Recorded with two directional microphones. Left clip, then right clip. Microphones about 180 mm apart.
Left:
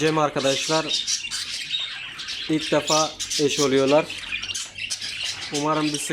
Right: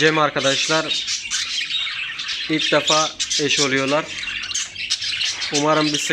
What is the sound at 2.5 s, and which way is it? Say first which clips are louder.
Speech: right 4 dB; 15° left (ahead or behind).